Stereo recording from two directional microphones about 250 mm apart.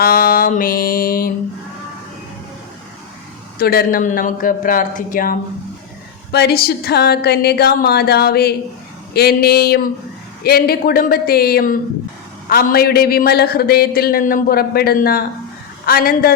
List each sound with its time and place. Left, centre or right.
0.0 s a man's voice: left
3.6 s a man's voice: left